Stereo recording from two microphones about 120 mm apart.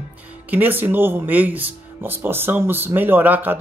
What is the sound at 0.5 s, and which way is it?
Speech, 15° right (ahead or behind).